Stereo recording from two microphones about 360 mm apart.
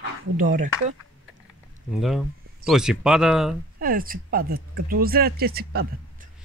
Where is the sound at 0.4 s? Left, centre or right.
Right.